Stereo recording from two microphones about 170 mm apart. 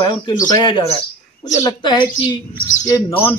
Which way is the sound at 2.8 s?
15° left (ahead or behind).